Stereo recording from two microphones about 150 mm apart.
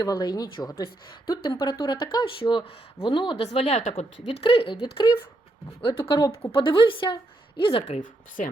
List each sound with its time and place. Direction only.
0.0 s speech: 30° left (ahead or behind)
5.8 s speech: 25° left (ahead or behind)
6.5 s speech: 35° left (ahead or behind)
8.4 s speech: 60° left (ahead or behind)